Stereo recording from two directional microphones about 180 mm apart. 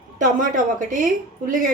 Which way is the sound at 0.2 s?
45° right (ahead or behind).